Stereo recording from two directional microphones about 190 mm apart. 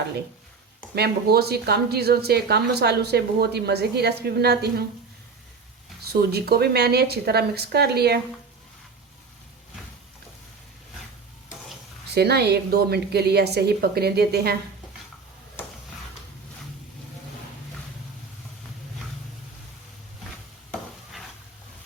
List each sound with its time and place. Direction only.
0.9 s a woman's voice: 55° right (ahead or behind)
6.1 s a woman's voice: 55° right (ahead or behind)
12.0 s a woman's voice: 60° right (ahead or behind)